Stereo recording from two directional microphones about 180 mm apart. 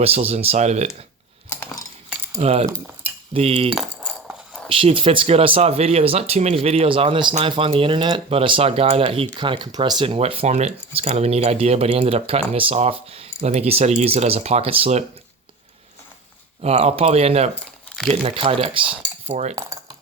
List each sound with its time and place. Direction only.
0.0 s speech: 35° right (ahead or behind)
2.0 s cutlery: 10° right (ahead or behind)
2.4 s speech: 35° right (ahead or behind)
3.8 s a sound: 5° right (ahead or behind)
4.7 s speech: 30° right (ahead or behind)
16.6 s speech: 35° right (ahead or behind)
17.8 s crumpling: centre (ahead or behind)
18.1 s speech: 35° right (ahead or behind)
19.5 s cutlery: 15° right (ahead or behind)